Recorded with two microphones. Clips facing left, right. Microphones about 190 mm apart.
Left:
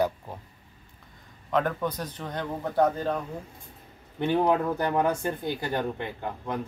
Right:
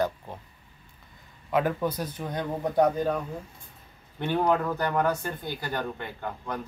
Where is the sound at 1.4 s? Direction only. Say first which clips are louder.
Right 1 dB; 10° right (ahead or behind).